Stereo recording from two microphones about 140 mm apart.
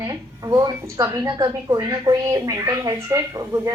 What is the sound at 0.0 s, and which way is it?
Speech, 25° right (ahead or behind).